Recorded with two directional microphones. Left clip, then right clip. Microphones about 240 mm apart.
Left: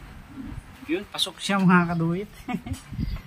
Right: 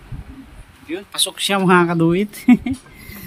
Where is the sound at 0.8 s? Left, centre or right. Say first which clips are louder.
Right 5 dB; right.